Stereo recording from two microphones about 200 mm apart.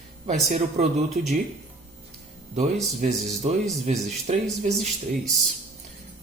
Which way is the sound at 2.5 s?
35° right (ahead or behind).